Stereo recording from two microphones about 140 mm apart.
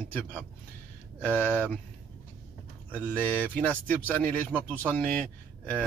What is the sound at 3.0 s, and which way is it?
Speech, 15° left (ahead or behind).